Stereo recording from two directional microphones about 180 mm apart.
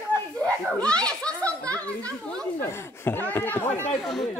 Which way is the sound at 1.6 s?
10° left (ahead or behind).